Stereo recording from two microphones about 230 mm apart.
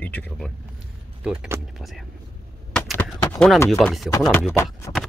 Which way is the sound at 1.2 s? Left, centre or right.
Centre.